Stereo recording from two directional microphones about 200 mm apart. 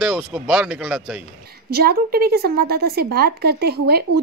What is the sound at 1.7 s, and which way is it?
A woman's voice, 50° right (ahead or behind).